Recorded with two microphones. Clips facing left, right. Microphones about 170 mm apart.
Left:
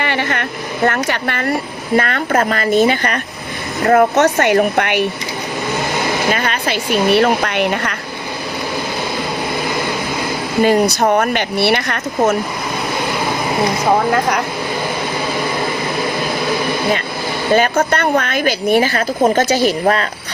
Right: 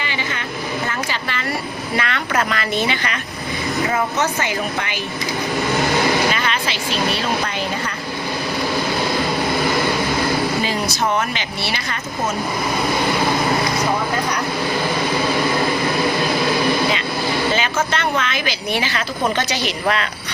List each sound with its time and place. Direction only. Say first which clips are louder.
0.0 s a sound: left 7 dB; 60° left (ahead or behind)
0.9 s a woman's voice: left 7 dB; 60° left (ahead or behind)
3.8 s speech: left 12 dB; 65° left (ahead or behind)
6.3 s speech: left 4 dB; 50° left (ahead or behind); by 7.9 s 65° left (ahead or behind)
10.6 s speech: left 8 dB; 55° left (ahead or behind)
14.1 s speech: left 6 dB; 90° left
17.5 s a woman's voice: left 7 dB; 50° left (ahead or behind)